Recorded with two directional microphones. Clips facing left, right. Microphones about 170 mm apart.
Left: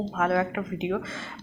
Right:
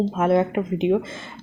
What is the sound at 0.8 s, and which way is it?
Speech, 20° right (ahead or behind).